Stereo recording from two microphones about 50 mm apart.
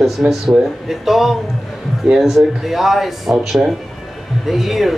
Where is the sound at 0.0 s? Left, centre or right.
Centre.